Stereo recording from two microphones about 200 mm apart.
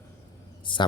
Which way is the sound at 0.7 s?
25° left (ahead or behind).